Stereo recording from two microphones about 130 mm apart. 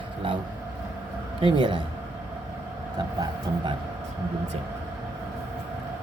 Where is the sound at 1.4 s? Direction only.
40° right (ahead or behind).